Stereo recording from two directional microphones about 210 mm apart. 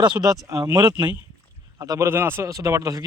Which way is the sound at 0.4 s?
15° right (ahead or behind).